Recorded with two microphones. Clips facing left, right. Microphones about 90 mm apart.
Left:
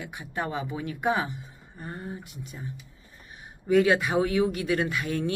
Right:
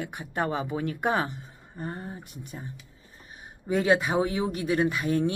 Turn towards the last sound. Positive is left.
turn(degrees=-25)  # may be behind; listen again after turning